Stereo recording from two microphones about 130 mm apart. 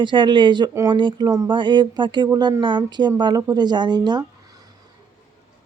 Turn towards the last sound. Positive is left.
turn(degrees=-35)  # may be behind; listen again after turning